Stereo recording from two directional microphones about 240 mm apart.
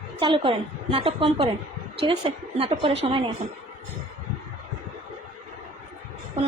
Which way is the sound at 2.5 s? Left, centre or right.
Right.